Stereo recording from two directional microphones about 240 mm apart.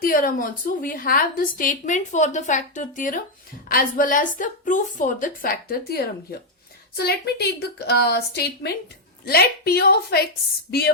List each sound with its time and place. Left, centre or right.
0.0 s a woman's voice: left